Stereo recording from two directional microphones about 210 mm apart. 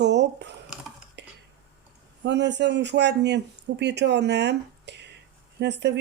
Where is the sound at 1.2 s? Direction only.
55° right (ahead or behind).